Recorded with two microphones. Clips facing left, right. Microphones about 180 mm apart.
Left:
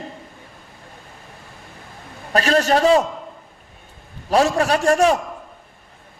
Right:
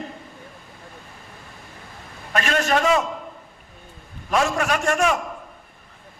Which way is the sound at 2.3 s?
35° left (ahead or behind).